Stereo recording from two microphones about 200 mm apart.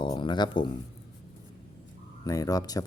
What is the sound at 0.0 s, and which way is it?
Speech, 25° left (ahead or behind).